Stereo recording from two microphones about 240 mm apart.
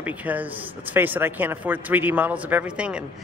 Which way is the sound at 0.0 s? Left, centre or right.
Centre.